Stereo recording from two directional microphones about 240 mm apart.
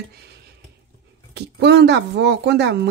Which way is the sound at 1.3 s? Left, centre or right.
Right.